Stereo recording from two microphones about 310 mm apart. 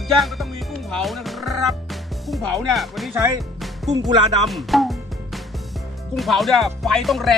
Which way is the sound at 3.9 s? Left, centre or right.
Right.